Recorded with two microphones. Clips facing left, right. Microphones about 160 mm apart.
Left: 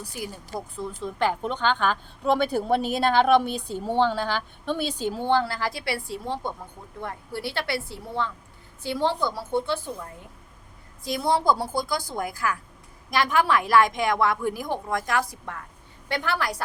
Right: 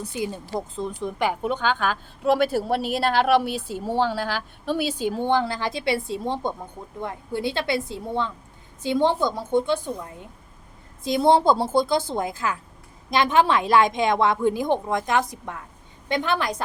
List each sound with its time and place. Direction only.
0.0 s a woman's voice: 20° right (ahead or behind)
11.0 s a woman's voice: 25° right (ahead or behind)